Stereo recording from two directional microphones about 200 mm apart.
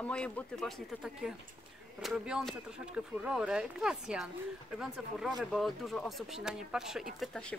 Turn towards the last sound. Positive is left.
turn(degrees=0)  # may be behind; listen again after turning